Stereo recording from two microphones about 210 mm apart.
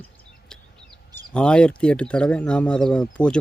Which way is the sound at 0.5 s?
5° left (ahead or behind).